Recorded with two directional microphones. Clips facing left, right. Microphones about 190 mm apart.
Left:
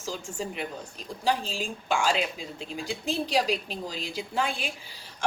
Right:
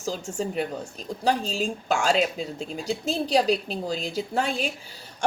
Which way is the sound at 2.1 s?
40° right (ahead or behind).